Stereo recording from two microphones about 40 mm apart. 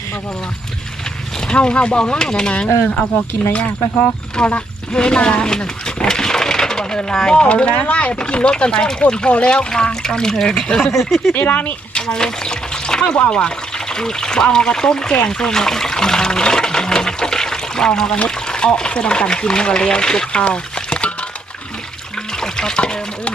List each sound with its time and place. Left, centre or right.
1.4 s speech: left
2.5 s speech: left
4.4 s speech: centre
7.4 s speech: left; by 10.9 s centre
10.9 s speech: centre
11.3 s speech: left
11.9 s speech: left
15.3 s water: centre
18.3 s a sound: centre
18.8 s speech: left
20.3 s a sound: left
22.3 s water: centre